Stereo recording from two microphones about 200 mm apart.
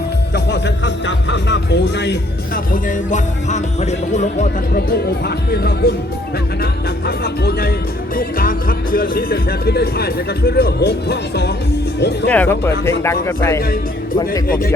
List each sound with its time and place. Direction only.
0.3 s speech: 60° left (ahead or behind)
2.7 s music: 35° left (ahead or behind)
4.9 s speech: 50° left (ahead or behind)
8.1 s speech: 45° left (ahead or behind)
12.3 s speech: 10° left (ahead or behind)
14.4 s speech: 45° left (ahead or behind)